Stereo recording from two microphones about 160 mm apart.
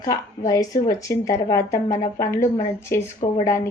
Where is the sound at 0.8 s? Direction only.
20° left (ahead or behind).